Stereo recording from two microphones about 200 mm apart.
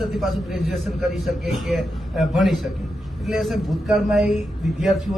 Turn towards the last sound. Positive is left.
turn(degrees=0)  # may be behind; listen again after turning